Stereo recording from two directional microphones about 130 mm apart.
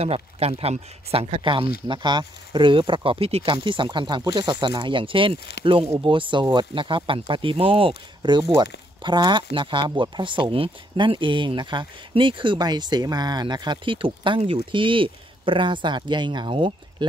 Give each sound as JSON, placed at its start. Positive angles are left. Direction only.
{"t": 0.0, "sound": "speech", "side_deg": -50}
{"t": 3.5, "sound": "speech", "side_deg": -40}